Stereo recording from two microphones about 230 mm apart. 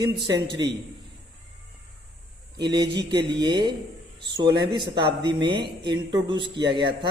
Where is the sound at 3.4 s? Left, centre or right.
Centre.